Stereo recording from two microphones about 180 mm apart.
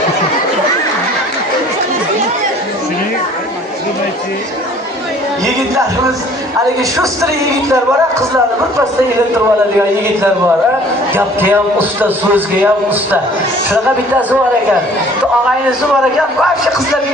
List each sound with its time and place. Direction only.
6.9 s a man's voice: 20° right (ahead or behind)
11.1 s a man's voice: 10° right (ahead or behind)